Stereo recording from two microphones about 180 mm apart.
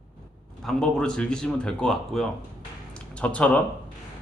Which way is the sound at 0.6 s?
5° left (ahead or behind).